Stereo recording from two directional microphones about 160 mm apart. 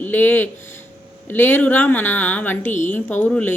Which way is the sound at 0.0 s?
10° left (ahead or behind).